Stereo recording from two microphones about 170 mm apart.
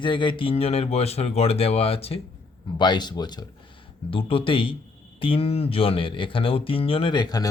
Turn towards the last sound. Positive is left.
turn(degrees=25)  # may be behind; listen again after turning